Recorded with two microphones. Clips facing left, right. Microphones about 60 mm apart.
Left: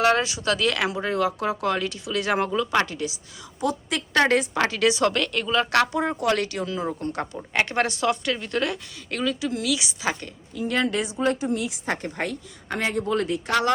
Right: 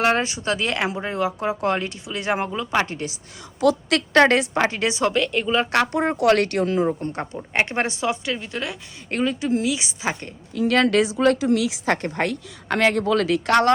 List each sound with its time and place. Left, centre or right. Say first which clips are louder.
0.0 s speech: even; right
2.8 s a woman's voice: even; right
3.6 s a woman's voice: right 7 dB; right
4.1 s a woman's voice: right 4 dB; right
4.7 s speech: even; right
5.9 s a woman's voice: right 3 dB; right
6.1 s speech: right 6 dB; right
7.0 s a woman's voice: right 1 dB; right; by 8.8 s centre
9.0 s speech: right 4 dB; right
10.5 s speech: right 6 dB; right
12.0 s speech: right 5 dB; right